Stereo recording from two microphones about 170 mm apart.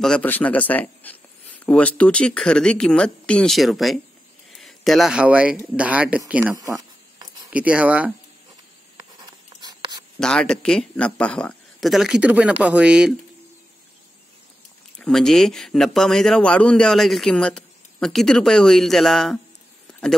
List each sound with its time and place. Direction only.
0.0 s speech: 5° left (ahead or behind); by 6.5 s 10° right (ahead or behind)
6.5 s a sound: 20° right (ahead or behind)
7.5 s speech: 5° right (ahead or behind)
8.9 s writing: 25° right (ahead or behind)
10.1 s speech: 5° left (ahead or behind)
15.0 s speech: 5° left (ahead or behind)